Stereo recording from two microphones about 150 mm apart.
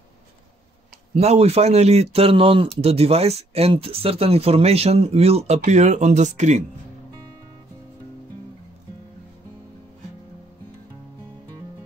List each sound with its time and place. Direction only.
1.1 s speech: 45° right (ahead or behind)